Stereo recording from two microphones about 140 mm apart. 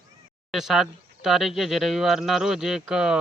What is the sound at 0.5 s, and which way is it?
Speech, centre (ahead or behind).